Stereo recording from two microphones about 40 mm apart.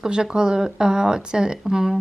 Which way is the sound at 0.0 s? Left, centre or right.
Centre.